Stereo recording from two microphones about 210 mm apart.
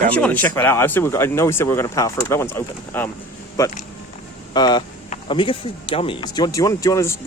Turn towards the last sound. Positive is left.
turn(degrees=15)  # may be behind; listen again after turning